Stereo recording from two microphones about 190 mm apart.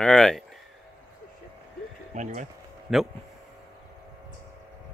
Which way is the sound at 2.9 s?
Centre (ahead or behind).